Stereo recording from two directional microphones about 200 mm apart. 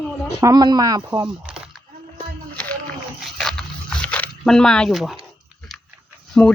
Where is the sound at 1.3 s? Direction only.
5° right (ahead or behind).